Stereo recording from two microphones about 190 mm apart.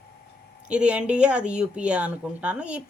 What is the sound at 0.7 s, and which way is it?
Speech, 5° right (ahead or behind).